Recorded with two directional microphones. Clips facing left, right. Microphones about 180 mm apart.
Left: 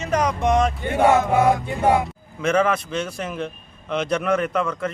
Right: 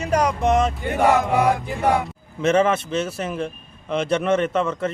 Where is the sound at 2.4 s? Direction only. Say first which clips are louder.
Right 2 dB; 25° right (ahead or behind).